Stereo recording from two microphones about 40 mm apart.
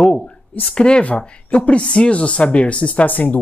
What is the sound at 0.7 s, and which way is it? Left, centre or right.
Speech, left.